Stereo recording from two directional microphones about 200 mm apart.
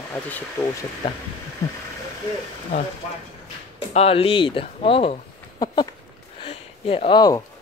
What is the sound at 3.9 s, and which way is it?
Speech, 30° left (ahead or behind).